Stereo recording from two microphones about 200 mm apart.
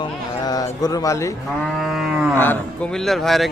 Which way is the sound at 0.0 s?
20° left (ahead or behind).